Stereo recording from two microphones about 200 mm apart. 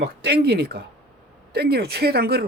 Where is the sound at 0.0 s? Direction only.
55° right (ahead or behind).